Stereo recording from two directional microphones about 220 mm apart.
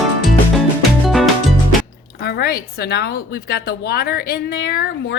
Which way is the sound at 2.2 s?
45° left (ahead or behind).